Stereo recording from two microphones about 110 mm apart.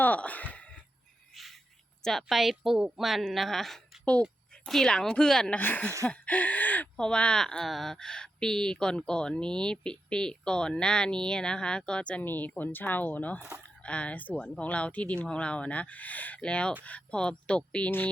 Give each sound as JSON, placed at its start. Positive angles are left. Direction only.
{"t": 0.0, "sound": "a sound", "side_deg": 15}
{"t": 2.0, "sound": "a woman's voice", "side_deg": 0}
{"t": 5.5, "sound": "speech", "side_deg": 15}